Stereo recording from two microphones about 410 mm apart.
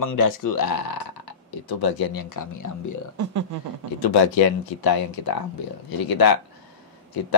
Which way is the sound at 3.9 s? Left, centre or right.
Left.